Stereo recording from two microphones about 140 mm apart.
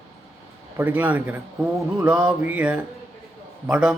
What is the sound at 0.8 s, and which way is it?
A man's voice, 10° right (ahead or behind).